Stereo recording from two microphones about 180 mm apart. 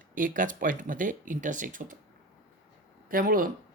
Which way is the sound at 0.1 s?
50° right (ahead or behind).